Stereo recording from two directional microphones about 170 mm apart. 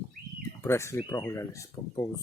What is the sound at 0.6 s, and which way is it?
Speech, 15° left (ahead or behind).